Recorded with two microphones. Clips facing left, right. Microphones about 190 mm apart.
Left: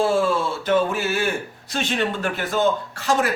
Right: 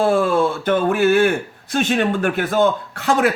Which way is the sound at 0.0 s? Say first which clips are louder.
Right 4 dB; 55° right (ahead or behind).